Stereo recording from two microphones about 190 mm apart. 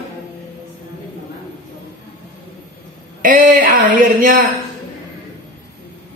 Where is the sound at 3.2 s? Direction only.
45° right (ahead or behind).